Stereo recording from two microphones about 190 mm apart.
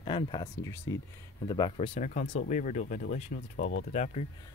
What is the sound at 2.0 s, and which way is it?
Speech, 40° left (ahead or behind).